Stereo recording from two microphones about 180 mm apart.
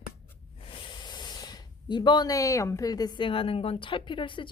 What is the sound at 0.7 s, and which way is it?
Speech, 25° left (ahead or behind).